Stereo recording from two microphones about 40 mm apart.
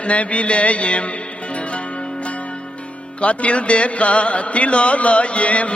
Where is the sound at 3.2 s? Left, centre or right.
Left.